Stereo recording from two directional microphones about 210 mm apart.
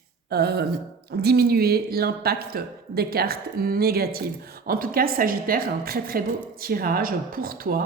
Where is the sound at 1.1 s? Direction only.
50° right (ahead or behind).